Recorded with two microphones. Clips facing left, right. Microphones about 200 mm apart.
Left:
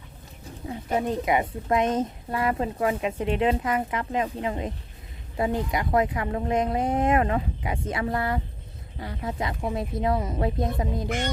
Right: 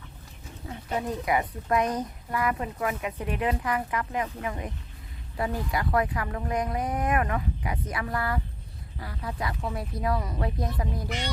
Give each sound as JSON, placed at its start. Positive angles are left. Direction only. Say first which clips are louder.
{"t": 0.7, "sound": "speech", "louder": "left 4 dB", "side_deg": 25}